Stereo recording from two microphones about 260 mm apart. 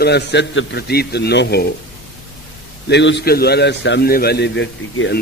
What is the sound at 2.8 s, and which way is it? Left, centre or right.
A man's voice, left.